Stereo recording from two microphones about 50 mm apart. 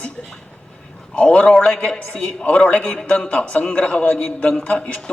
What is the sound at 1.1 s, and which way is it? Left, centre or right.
A man's voice, left.